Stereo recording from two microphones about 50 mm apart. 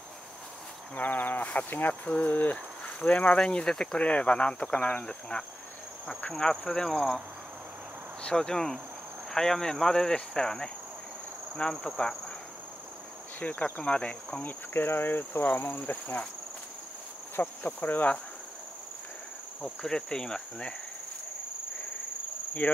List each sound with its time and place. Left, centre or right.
0.9 s speech: left; by 5.4 s centre
6.3 s speech: centre
8.2 s speech: centre
11.8 s speech: centre
13.4 s speech: left
14.4 s speech: left
17.4 s speech: left
19.6 s speech: centre
22.6 s speech: left